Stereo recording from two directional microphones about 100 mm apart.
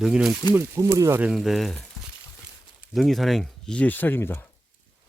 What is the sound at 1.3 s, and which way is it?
Speech, centre (ahead or behind).